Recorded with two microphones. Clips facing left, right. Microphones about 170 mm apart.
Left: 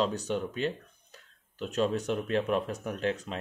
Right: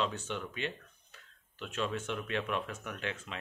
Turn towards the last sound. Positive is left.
turn(degrees=40)  # may be behind; listen again after turning